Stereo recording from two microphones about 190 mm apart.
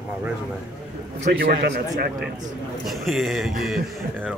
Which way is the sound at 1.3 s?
60° right (ahead or behind).